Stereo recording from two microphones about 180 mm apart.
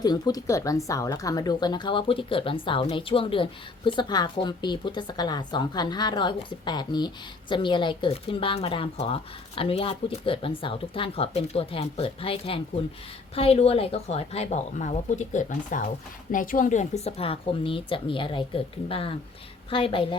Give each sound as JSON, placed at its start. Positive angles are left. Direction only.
{"t": 0.0, "sound": "speech", "side_deg": 20}